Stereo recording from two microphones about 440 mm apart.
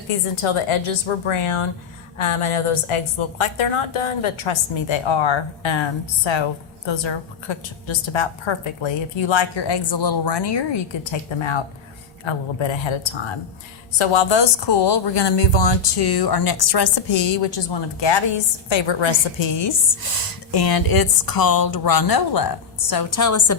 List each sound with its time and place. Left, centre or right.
0.4 s a woman's voice: left
11.3 s a woman's voice: left
14.0 s speech: left
20.5 s speech: left